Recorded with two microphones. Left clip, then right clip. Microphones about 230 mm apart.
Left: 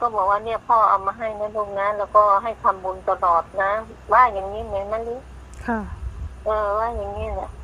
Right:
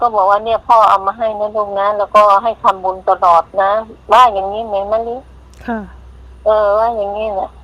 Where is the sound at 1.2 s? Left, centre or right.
Right.